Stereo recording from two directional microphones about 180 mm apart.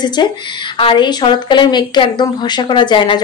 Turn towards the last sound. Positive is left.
turn(degrees=25)  # may be behind; listen again after turning